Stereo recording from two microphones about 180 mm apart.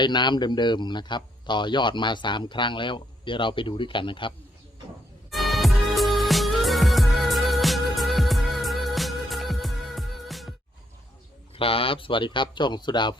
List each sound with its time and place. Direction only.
0.0 s a man's voice: 25° left (ahead or behind)
5.3 s music: centre (ahead or behind)
11.5 s a man's voice: 30° left (ahead or behind)